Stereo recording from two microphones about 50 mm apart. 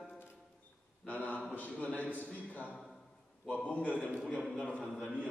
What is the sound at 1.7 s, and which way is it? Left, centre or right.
Speech, centre.